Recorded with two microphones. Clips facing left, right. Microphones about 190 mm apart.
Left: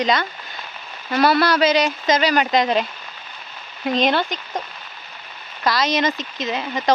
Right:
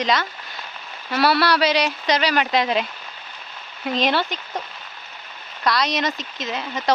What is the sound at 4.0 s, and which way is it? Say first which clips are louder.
Speech: left 2 dB; 45° left (ahead or behind).